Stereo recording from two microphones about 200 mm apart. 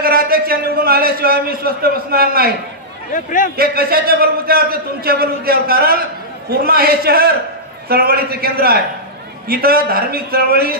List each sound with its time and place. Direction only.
0.0 s a man's voice: 50° right (ahead or behind)
3.1 s a man's voice: 40° left (ahead or behind)
3.5 s a man's voice: 50° right (ahead or behind)